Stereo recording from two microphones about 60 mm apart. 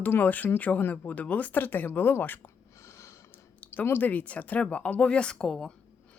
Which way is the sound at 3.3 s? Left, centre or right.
Left.